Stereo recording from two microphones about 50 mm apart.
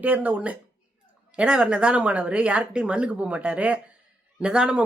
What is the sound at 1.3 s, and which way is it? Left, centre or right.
Speech, centre.